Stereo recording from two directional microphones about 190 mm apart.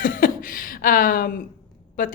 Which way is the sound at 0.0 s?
45° left (ahead or behind).